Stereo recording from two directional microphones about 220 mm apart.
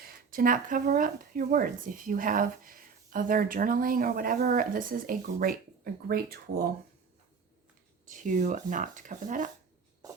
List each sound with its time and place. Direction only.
0.0 s speech: 40° right (ahead or behind)
8.0 s speech: 35° right (ahead or behind)